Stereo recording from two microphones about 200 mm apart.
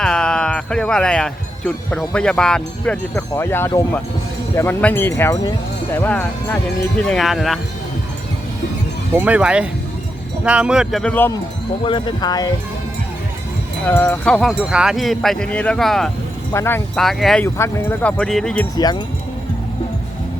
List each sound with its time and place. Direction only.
0.0 s speech: 5° left (ahead or behind)
9.1 s speech: 5° right (ahead or behind); by 11.3 s 10° left (ahead or behind)
11.9 s speech: 25° left (ahead or behind)
13.8 s speech: 10° left (ahead or behind)
16.5 s speech: 15° left (ahead or behind)
18.8 s speech: 20° left (ahead or behind)